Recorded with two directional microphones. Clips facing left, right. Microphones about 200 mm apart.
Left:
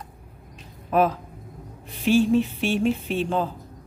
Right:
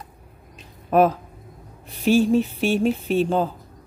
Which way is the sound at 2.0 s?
40° right (ahead or behind).